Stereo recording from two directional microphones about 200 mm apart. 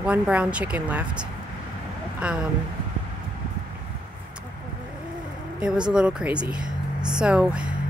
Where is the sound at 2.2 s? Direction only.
5° right (ahead or behind).